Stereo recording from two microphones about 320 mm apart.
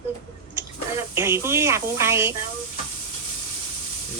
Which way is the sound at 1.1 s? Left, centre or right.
Centre.